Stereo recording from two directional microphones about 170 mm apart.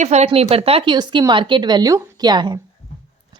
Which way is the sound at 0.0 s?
40° right (ahead or behind).